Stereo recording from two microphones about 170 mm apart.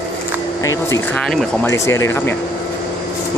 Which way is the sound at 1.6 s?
15° left (ahead or behind).